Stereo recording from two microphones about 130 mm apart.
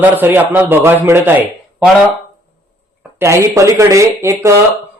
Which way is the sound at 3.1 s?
20° right (ahead or behind).